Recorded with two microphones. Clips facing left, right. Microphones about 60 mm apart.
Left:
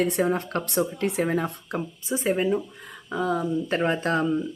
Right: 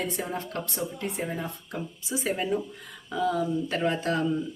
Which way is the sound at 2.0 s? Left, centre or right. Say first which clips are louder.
Left 5 dB; left.